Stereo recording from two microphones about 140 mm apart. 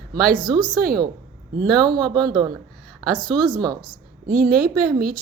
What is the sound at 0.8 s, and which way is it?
Speech, 90° right.